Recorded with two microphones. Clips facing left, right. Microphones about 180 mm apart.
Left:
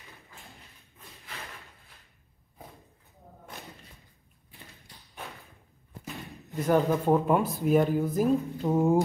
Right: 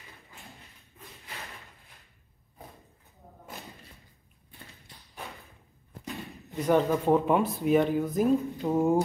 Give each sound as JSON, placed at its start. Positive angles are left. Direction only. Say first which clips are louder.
{"t": 6.0, "sound": "speech", "louder": "right 2 dB", "side_deg": 0}